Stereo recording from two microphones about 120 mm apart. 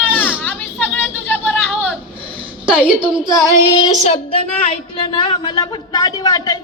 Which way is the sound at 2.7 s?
10° right (ahead or behind).